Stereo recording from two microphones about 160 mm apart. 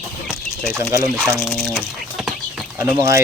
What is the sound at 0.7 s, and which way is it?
Speech, 15° right (ahead or behind).